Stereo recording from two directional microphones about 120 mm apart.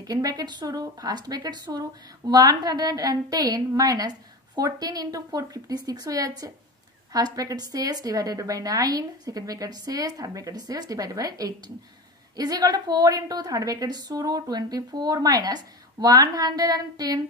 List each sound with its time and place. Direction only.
0.0 s a woman's voice: 30° right (ahead or behind)